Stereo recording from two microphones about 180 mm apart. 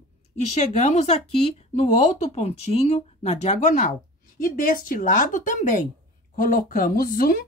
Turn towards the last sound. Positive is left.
turn(degrees=55)  # may be behind; listen again after turning